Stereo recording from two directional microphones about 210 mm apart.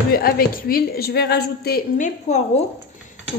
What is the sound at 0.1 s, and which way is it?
A woman's voice, 45° left (ahead or behind).